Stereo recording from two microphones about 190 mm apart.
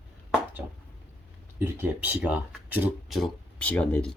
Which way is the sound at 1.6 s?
10° right (ahead or behind).